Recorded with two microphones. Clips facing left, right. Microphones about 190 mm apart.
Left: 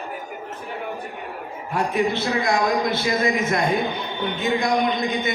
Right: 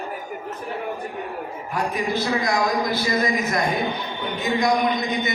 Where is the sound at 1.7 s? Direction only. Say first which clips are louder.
Left 3 dB; 25° left (ahead or behind).